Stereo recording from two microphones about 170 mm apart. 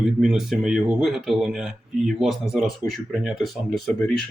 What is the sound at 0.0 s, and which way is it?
Speech, centre (ahead or behind).